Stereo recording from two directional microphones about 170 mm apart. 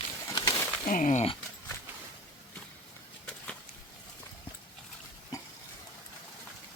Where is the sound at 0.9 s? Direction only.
50° left (ahead or behind).